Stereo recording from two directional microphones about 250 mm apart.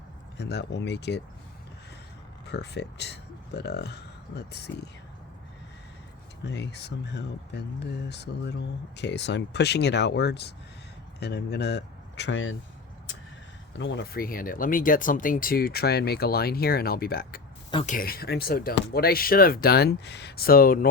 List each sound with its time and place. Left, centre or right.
0.3 s speech: left
2.5 s speech: left
6.4 s speech: left
13.7 s speech: left
17.7 s speech: centre
17.9 s speech: left